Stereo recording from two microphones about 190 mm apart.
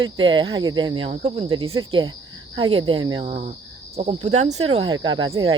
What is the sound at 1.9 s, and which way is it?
Speech, 25° right (ahead or behind).